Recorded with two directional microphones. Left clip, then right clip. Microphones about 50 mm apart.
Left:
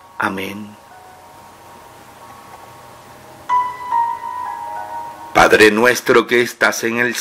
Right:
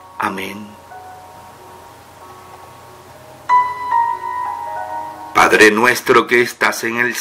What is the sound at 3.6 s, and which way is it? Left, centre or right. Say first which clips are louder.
Music: right 2 dB; right.